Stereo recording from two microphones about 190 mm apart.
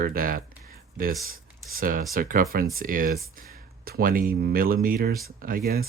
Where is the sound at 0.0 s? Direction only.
50° right (ahead or behind).